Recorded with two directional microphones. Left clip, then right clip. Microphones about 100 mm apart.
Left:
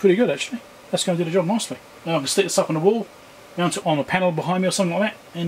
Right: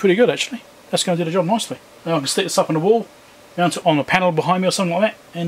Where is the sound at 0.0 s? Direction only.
55° right (ahead or behind).